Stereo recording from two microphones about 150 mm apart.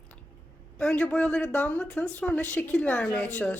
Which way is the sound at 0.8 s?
5° left (ahead or behind).